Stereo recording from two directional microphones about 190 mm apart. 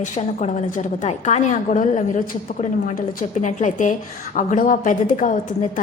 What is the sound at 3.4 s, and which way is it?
A woman's voice, 40° left (ahead or behind).